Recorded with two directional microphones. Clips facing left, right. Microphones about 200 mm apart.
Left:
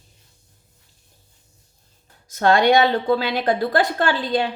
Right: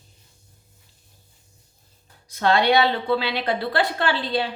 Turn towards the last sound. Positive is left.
turn(degrees=45)  # may be behind; listen again after turning